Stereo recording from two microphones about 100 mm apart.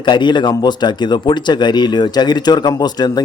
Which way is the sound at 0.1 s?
50° left (ahead or behind).